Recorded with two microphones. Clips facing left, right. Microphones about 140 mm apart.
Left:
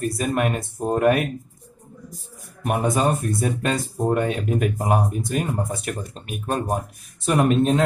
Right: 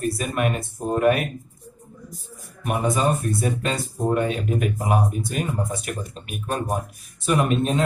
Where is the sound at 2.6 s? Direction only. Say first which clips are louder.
Left 1 dB; 45° left (ahead or behind).